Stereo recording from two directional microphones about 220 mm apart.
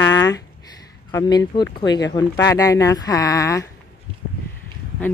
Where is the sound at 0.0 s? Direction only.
15° left (ahead or behind).